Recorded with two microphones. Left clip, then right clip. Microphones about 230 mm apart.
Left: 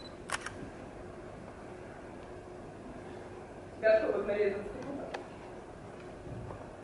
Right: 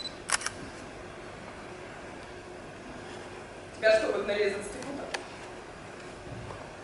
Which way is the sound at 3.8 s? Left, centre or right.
Centre.